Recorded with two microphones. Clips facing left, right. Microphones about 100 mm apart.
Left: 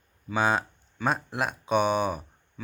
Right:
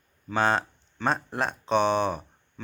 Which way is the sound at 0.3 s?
5° left (ahead or behind).